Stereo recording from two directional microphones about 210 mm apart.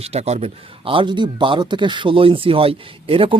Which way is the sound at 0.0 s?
30° right (ahead or behind).